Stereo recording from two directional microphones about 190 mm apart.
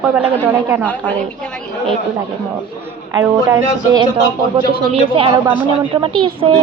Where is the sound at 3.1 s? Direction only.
20° right (ahead or behind).